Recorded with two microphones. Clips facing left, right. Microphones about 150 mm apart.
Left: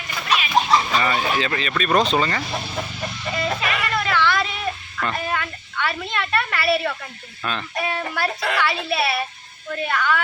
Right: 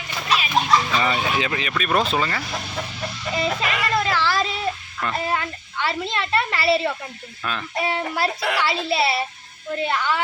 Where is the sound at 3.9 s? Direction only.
35° right (ahead or behind).